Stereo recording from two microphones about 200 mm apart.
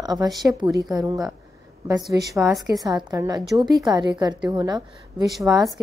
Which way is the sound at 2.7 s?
20° right (ahead or behind).